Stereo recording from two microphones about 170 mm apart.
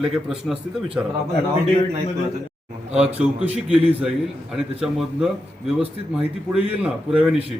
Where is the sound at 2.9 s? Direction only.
5° right (ahead or behind).